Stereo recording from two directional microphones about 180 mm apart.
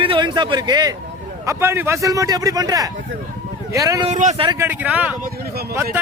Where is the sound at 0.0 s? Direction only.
25° right (ahead or behind).